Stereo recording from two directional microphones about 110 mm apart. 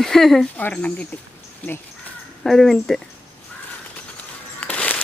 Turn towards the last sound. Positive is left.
turn(degrees=15)  # may be behind; listen again after turning